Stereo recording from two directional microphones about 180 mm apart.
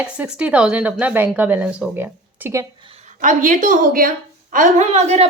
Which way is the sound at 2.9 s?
45° right (ahead or behind).